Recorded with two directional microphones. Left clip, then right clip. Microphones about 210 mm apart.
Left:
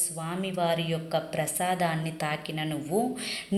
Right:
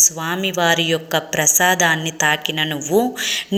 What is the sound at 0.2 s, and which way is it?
A woman's voice, 15° right (ahead or behind).